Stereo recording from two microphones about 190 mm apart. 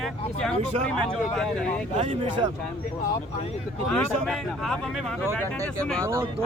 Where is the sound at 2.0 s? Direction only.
30° right (ahead or behind).